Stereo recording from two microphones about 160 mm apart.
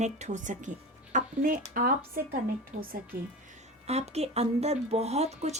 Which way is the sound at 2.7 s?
45° right (ahead or behind).